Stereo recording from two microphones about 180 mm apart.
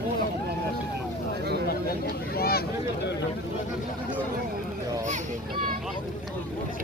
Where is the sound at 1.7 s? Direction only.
55° left (ahead or behind).